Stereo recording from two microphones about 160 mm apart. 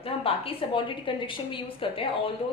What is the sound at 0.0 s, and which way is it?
A woman's voice, 35° left (ahead or behind).